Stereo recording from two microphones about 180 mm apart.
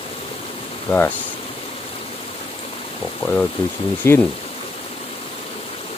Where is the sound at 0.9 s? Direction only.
15° left (ahead or behind).